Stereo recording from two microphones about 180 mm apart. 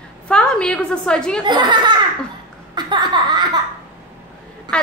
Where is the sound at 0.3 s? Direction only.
5° left (ahead or behind).